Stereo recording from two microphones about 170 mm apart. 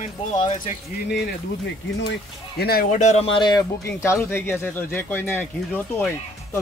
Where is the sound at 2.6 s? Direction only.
65° left (ahead or behind).